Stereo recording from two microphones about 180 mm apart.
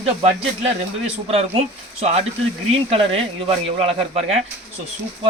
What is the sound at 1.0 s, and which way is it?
Speech, 35° right (ahead or behind).